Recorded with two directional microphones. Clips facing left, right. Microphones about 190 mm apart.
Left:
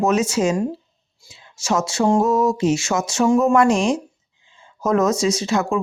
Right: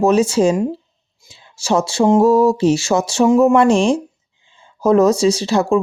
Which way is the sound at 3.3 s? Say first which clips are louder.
Right 4 dB; 20° right (ahead or behind).